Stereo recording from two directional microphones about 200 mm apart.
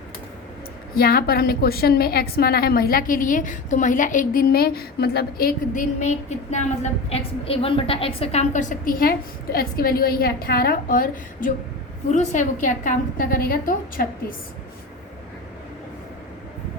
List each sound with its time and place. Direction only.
0.9 s a woman's voice: 50° left (ahead or behind)